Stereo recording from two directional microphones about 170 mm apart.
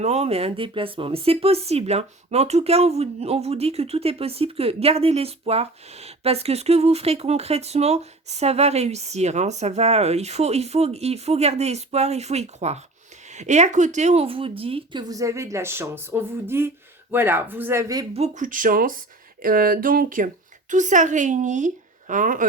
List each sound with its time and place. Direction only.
0.0 s speech: 40° right (ahead or behind); by 18.0 s 15° right (ahead or behind)
18.1 s a woman's voice: 45° right (ahead or behind)